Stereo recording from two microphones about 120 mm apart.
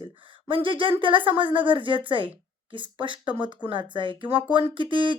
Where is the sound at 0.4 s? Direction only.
45° right (ahead or behind).